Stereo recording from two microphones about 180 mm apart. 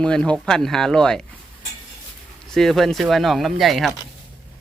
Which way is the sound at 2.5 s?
Centre (ahead or behind).